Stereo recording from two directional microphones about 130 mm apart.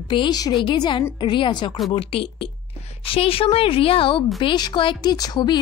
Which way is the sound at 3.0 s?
45° left (ahead or behind).